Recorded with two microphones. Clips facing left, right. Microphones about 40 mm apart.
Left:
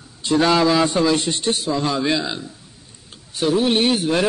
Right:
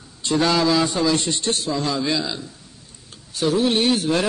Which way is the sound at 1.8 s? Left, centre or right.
Left.